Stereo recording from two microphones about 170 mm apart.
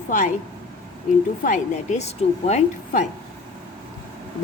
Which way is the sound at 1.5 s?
45° left (ahead or behind).